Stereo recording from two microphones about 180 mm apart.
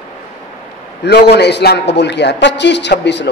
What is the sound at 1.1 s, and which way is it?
A man's voice, 65° left (ahead or behind).